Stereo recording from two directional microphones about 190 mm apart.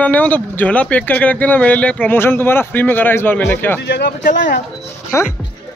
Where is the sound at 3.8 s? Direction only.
60° left (ahead or behind).